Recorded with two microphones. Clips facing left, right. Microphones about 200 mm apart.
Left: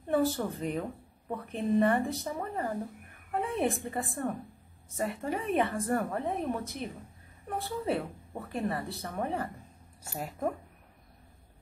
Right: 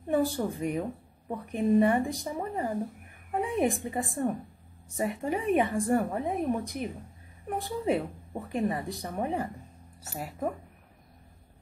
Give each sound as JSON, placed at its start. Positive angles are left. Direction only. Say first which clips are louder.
{"t": 0.1, "sound": "a woman's voice", "louder": "right 1 dB", "side_deg": -10}